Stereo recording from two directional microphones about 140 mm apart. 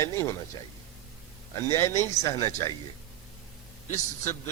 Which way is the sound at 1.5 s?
20° left (ahead or behind).